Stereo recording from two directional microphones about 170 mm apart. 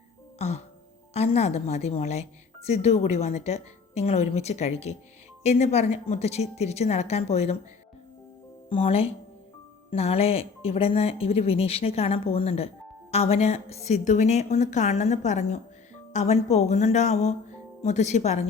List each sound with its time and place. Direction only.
0.3 s music: 40° left (ahead or behind)
1.1 s speech: 40° left (ahead or behind)
8.7 s speech: 35° left (ahead or behind)